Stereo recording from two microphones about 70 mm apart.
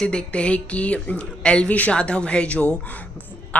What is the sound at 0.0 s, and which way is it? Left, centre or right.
A woman's voice, centre.